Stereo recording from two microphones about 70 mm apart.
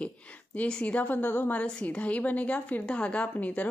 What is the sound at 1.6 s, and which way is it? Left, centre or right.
Speech, centre.